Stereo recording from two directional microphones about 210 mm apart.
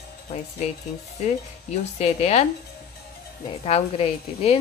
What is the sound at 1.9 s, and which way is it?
Speech, 30° left (ahead or behind).